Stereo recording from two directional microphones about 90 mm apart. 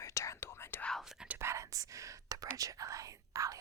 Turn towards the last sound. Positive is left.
turn(degrees=-40)  # may be behind; listen again after turning